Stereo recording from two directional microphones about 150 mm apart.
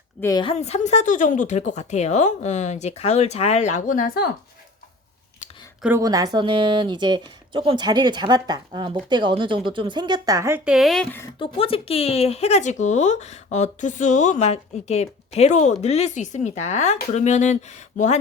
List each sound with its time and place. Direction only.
0.2 s a woman's voice: 20° left (ahead or behind)
0.4 s speech: 45° left (ahead or behind); by 4.3 s 85° left
5.4 s a sound: 55° left (ahead or behind)
6.0 s speech: 25° right (ahead or behind)
10.7 s speech: centre (ahead or behind)
11.3 s speech: 40° left (ahead or behind)